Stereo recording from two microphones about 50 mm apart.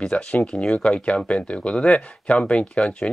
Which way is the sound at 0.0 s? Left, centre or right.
Left.